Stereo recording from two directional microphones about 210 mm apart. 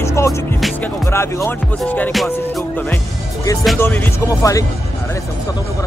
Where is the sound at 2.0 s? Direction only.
Centre (ahead or behind).